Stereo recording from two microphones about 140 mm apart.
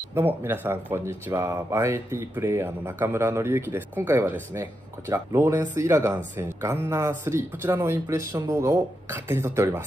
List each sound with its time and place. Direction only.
0.1 s speech: 15° right (ahead or behind)